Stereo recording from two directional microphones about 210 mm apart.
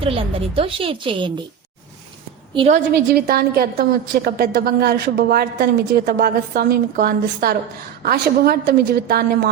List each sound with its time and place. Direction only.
0.0 s a woman's voice: 25° right (ahead or behind)
2.6 s a woman's voice: 30° right (ahead or behind)
2.9 s a woman's voice: 45° right (ahead or behind)